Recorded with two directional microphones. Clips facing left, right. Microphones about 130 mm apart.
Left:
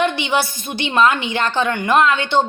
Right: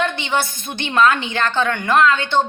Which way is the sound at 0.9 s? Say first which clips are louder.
Even; 15° left (ahead or behind).